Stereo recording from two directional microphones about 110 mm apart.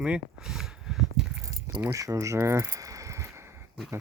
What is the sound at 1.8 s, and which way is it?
Speech, 30° right (ahead or behind).